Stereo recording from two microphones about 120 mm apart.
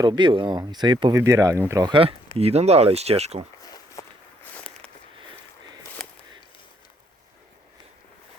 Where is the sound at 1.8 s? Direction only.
45° right (ahead or behind).